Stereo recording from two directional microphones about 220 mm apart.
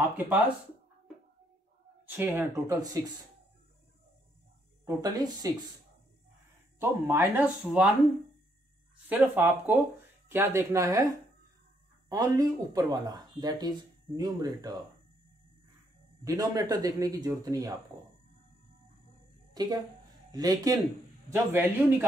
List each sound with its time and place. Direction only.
2.0 s speech: 10° right (ahead or behind)
4.8 s speech: 15° right (ahead or behind)
6.8 s speech: 10° right (ahead or behind)
9.1 s speech: 10° right (ahead or behind)
12.1 s speech: 15° right (ahead or behind)
16.3 s speech: 15° right (ahead or behind)
19.5 s a woman's voice: 20° right (ahead or behind)